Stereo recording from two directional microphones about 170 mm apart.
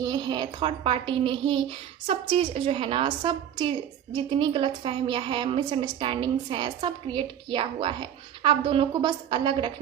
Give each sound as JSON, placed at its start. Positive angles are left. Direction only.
{"t": 0.0, "sound": "a woman's voice", "side_deg": -25}